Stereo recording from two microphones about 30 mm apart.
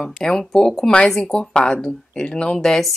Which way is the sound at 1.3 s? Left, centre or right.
Left.